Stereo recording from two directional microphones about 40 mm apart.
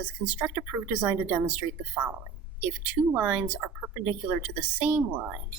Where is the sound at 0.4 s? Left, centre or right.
Right.